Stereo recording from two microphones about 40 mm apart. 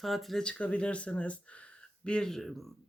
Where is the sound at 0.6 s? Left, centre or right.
Left.